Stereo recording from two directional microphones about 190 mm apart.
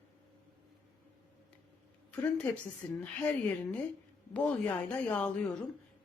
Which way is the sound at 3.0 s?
10° left (ahead or behind).